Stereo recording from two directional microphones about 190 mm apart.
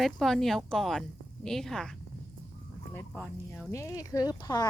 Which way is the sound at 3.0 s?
5° left (ahead or behind).